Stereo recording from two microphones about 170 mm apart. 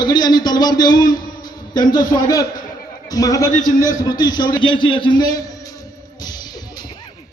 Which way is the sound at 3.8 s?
20° left (ahead or behind).